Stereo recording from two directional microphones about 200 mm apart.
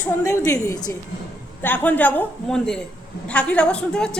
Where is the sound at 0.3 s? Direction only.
15° left (ahead or behind).